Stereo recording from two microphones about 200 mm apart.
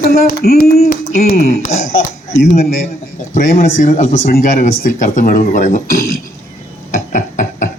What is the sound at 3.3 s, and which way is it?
Speech, 40° left (ahead or behind).